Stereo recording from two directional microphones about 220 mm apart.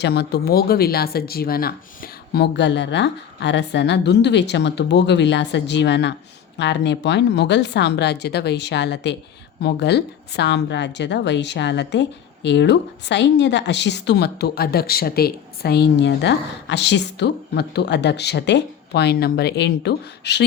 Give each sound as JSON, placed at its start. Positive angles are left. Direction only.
{"t": 0.0, "sound": "a woman's voice", "side_deg": 50}